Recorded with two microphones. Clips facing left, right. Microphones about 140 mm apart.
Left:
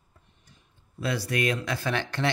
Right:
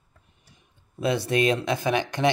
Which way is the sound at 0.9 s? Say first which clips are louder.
Right 5 dB; 20° right (ahead or behind).